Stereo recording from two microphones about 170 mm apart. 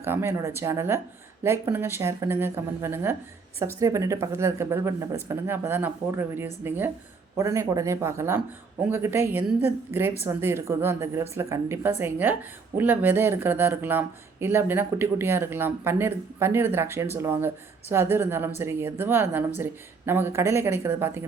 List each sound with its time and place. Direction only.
0.0 s a woman's voice: 15° right (ahead or behind)